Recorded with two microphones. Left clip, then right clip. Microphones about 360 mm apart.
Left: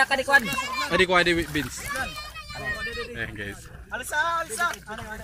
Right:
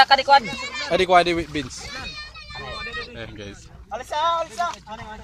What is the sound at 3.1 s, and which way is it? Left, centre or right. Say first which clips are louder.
Speech: left 3 dB; centre.